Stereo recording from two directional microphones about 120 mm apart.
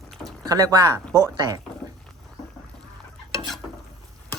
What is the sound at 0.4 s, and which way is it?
Speech, 30° right (ahead or behind).